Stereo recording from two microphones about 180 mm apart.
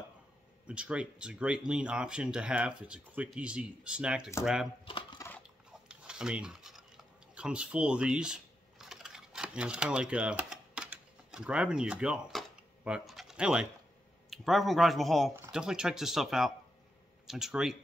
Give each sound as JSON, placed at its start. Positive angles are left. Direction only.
{"t": 0.7, "sound": "speech", "side_deg": -5}
{"t": 4.8, "sound": "a sound", "side_deg": 30}
{"t": 5.7, "sound": "cutlery", "side_deg": -5}
{"t": 7.3, "sound": "typing", "side_deg": -5}
{"t": 14.3, "sound": "speech", "side_deg": 0}